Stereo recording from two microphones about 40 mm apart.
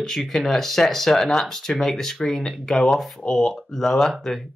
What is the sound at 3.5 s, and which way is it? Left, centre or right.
Speech, centre.